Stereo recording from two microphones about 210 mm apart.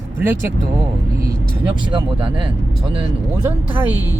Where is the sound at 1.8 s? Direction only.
25° right (ahead or behind).